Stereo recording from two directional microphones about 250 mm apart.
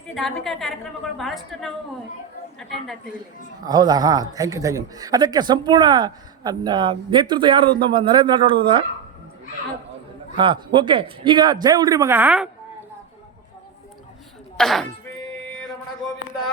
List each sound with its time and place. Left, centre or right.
0.1 s a woman's voice: centre
3.7 s a man's voice: centre
10.3 s a man's voice: centre
14.6 s a woman's voice: centre